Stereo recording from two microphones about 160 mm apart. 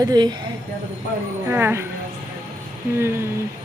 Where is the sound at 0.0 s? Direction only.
25° right (ahead or behind).